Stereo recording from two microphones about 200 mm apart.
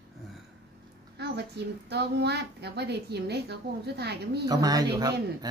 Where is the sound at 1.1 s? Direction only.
55° right (ahead or behind).